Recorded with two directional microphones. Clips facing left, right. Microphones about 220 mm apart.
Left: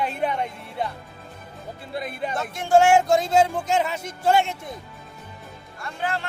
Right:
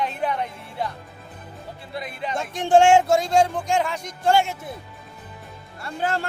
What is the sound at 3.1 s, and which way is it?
Music, centre (ahead or behind).